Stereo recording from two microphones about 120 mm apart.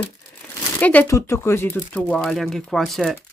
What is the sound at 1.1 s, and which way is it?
Speech, 25° left (ahead or behind).